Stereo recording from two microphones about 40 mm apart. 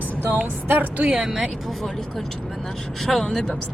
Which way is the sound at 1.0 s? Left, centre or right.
Centre.